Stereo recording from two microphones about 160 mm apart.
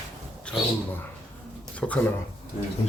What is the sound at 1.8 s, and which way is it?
Speech, 5° left (ahead or behind).